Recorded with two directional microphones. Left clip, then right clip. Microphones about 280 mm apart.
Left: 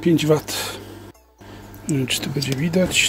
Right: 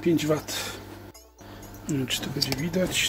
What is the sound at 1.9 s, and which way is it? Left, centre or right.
Speech, centre.